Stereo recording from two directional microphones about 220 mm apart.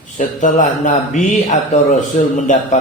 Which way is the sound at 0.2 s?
35° left (ahead or behind).